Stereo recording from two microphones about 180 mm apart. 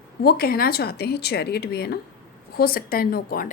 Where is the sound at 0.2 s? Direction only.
55° left (ahead or behind).